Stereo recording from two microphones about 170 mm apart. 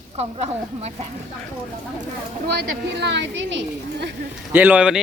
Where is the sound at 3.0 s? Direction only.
90° right.